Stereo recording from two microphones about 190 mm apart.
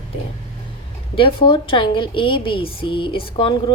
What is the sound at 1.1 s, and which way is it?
A woman's voice, 25° left (ahead or behind).